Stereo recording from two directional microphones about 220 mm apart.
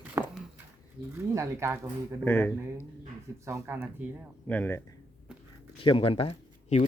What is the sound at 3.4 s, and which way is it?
Speech, 10° right (ahead or behind).